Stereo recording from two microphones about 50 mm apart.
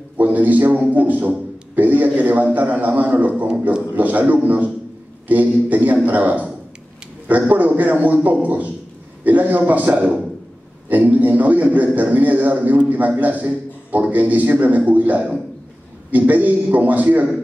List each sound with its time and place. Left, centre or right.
0.2 s a man's voice: right